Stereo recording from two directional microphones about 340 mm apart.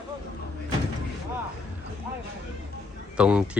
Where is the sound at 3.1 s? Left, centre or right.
Centre.